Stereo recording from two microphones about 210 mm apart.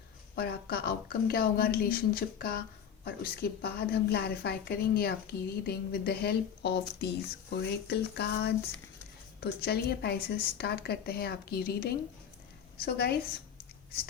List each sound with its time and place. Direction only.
0.3 s a woman's voice: 45° left (ahead or behind)